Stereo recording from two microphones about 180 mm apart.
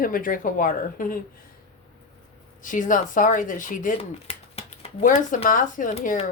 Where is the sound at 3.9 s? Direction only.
35° left (ahead or behind).